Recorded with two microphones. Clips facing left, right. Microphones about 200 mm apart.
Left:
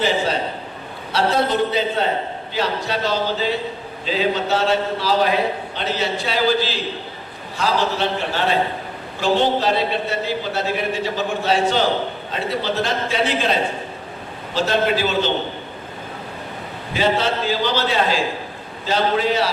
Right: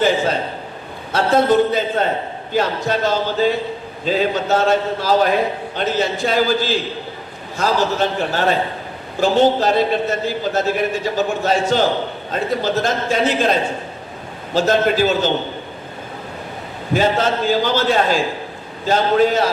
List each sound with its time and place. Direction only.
1.1 s a man's voice: 50° right (ahead or behind)
16.9 s a man's voice: 45° right (ahead or behind)